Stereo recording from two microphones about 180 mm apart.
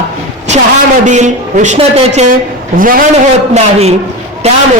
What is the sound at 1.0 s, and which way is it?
A woman's voice, 40° right (ahead or behind).